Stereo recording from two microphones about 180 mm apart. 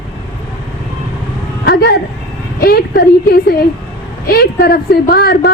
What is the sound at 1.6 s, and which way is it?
A woman's voice, 60° left (ahead or behind).